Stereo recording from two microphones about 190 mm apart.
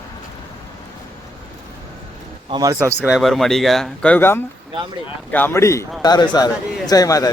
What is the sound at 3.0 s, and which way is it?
Speech, centre (ahead or behind).